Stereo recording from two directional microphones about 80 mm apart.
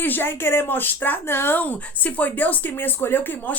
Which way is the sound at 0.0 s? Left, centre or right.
Left.